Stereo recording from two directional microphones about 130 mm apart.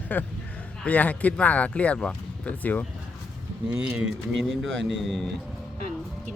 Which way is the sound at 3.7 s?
10° right (ahead or behind).